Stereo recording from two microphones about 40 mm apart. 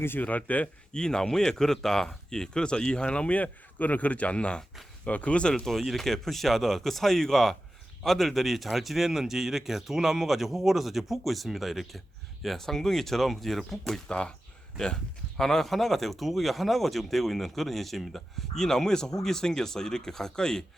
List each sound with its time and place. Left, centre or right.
0.2 s speech: left
0.9 s a man's voice: centre
5.5 s speech: centre
14.1 s a man's voice: left